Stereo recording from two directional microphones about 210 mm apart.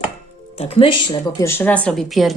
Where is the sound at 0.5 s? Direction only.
25° left (ahead or behind).